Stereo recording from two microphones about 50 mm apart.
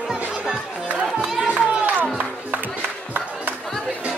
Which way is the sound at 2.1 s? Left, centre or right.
Right.